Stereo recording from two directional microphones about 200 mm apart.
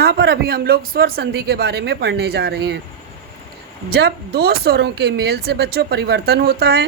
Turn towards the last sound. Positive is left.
turn(degrees=-55)  # may be behind; listen again after turning